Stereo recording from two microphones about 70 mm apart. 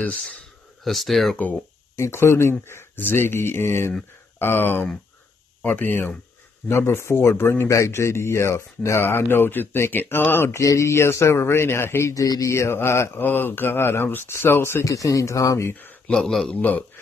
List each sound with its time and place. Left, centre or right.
0.8 s a man's voice: centre
1.3 s speech: left
2.0 s speech: left
10.6 s speech: left
12.1 s speech: left
14.9 s speech: left
16.1 s a man's voice: centre
16.5 s speech: left